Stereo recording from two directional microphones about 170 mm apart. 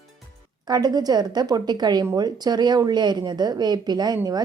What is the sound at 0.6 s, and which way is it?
Speech, 25° right (ahead or behind).